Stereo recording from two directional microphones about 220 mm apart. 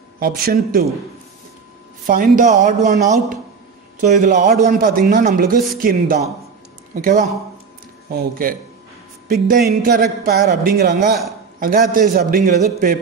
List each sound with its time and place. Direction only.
0.4 s speech: 40° right (ahead or behind)
2.0 s a man's voice: 40° right (ahead or behind)